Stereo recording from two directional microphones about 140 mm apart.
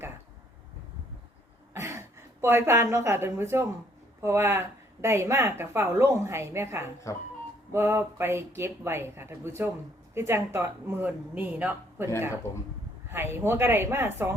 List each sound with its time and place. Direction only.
1.7 s a woman's voice: 20° right (ahead or behind)
7.1 s speech: 20° left (ahead or behind)
7.7 s speech: 15° right (ahead or behind)
13.1 s speech: 15° right (ahead or behind)